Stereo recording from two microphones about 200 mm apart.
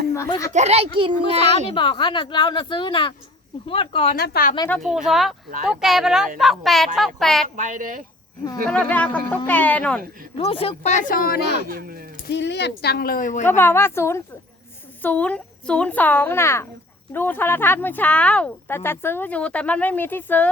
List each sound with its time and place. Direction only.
0.1 s speech: 15° left (ahead or behind)
0.5 s a child's voice: 35° right (ahead or behind)
1.4 s speech: 25° left (ahead or behind)
4.2 s speech: 50° left (ahead or behind)
4.7 s speech: centre (ahead or behind)
7.5 s a child's voice: 40° right (ahead or behind)
8.6 s speech: 5° left (ahead or behind)
10.3 s speech: 30° left (ahead or behind); by 11.5 s 50° left (ahead or behind)
11.7 s speech: 45° right (ahead or behind)
12.3 s speech: 60° left (ahead or behind)
13.4 s speech: 10° left (ahead or behind)